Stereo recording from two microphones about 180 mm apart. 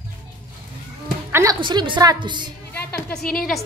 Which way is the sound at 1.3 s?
20° right (ahead or behind).